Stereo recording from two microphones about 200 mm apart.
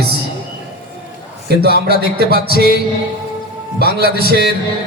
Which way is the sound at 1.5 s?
55° right (ahead or behind).